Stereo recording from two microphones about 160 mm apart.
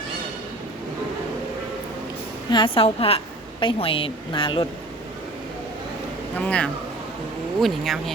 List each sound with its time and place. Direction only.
2.5 s a woman's voice: 30° left (ahead or behind)
6.3 s speech: 5° left (ahead or behind)